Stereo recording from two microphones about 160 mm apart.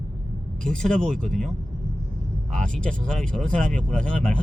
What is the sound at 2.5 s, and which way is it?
Speech, 5° left (ahead or behind).